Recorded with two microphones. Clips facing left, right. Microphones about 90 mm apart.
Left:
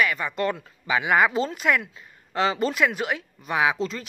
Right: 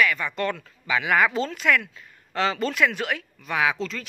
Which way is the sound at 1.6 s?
20° left (ahead or behind).